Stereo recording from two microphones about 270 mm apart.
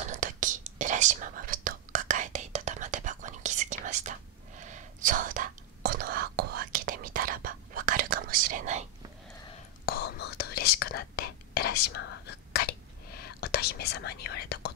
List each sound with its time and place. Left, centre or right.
0.0 s whispering: right
9.8 s whispering: left